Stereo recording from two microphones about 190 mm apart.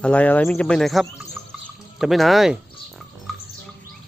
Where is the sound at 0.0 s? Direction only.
5° left (ahead or behind).